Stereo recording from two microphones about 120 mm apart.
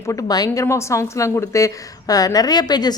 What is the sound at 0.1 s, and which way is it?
A woman's voice, 35° left (ahead or behind).